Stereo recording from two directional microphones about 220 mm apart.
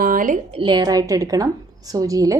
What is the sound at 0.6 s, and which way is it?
A woman's voice, 20° right (ahead or behind).